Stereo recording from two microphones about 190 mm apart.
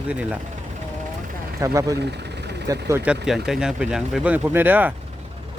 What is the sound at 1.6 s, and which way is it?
Speech, 15° right (ahead or behind).